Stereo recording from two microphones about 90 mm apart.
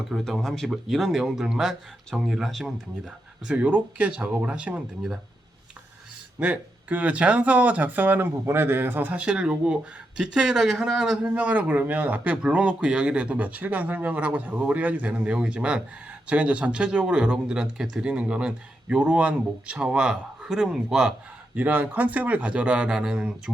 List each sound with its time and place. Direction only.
0.1 s speech: 5° left (ahead or behind)
3.4 s speech: 10° right (ahead or behind)
6.4 s speech: 15° right (ahead or behind)
11.3 s speech: 15° right (ahead or behind)
21.5 s speech: 20° right (ahead or behind)